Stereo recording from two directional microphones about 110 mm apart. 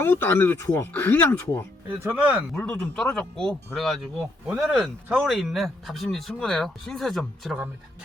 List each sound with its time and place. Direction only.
0.0 s speech: 20° left (ahead or behind)
2.1 s speech: 10° right (ahead or behind)
2.5 s speech: 10° left (ahead or behind)